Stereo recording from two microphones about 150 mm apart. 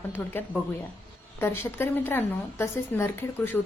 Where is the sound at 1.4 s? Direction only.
15° left (ahead or behind).